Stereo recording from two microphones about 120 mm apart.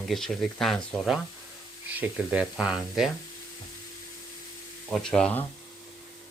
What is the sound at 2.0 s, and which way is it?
Speech, 10° right (ahead or behind).